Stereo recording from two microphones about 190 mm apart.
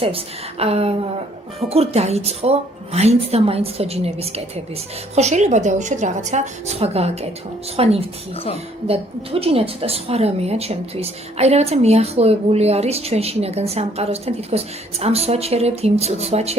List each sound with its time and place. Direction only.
0.0 s a woman's voice: 30° right (ahead or behind)